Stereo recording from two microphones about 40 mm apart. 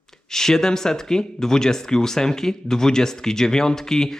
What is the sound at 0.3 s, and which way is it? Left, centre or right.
Speech, centre.